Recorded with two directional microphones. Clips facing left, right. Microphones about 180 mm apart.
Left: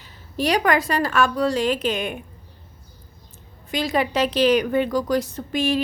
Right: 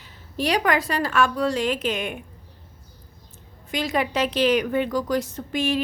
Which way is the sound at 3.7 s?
35° left (ahead or behind).